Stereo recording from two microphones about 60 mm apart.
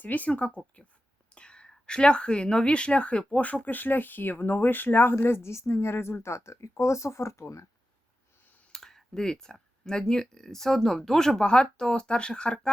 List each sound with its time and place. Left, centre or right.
0.0 s speech: left
5.2 s a woman's voice: left
8.7 s speech: centre